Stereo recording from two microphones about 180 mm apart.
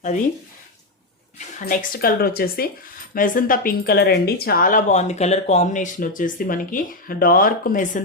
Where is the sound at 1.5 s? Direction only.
55° left (ahead or behind).